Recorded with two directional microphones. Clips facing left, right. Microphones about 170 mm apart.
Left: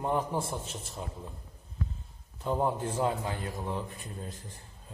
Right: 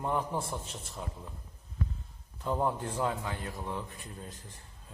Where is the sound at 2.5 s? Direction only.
20° left (ahead or behind).